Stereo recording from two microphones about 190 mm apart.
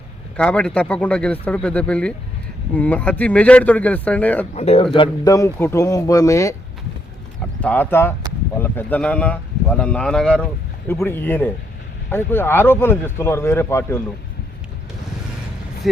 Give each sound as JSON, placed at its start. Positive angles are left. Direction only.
{"t": 0.3, "sound": "speech", "side_deg": 5}
{"t": 4.5, "sound": "a man's voice", "side_deg": 35}
{"t": 4.9, "sound": "speech", "side_deg": 20}
{"t": 7.6, "sound": "speech", "side_deg": 10}